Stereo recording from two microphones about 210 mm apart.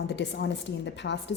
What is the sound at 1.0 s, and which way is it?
Speech, 60° left (ahead or behind).